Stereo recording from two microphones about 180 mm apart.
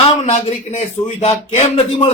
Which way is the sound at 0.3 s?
40° left (ahead or behind).